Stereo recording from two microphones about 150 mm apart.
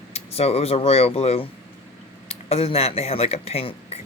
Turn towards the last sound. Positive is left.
turn(degrees=45)  # may be behind; listen again after turning